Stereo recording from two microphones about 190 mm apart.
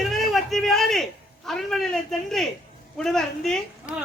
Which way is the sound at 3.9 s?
45° left (ahead or behind).